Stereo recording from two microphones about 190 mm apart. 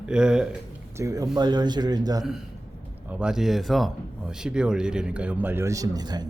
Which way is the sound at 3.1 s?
5° right (ahead or behind).